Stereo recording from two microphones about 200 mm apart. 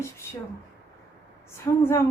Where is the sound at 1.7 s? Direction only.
15° left (ahead or behind).